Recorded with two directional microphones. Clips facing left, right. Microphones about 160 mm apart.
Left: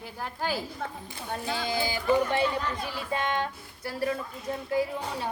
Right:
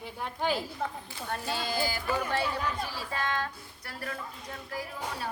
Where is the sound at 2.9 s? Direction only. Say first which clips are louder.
Left 4 dB; 25° left (ahead or behind).